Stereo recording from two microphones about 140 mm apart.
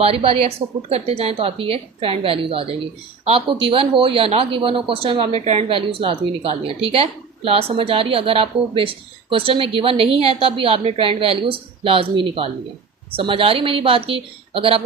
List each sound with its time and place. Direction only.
0.0 s a woman's voice: 45° right (ahead or behind)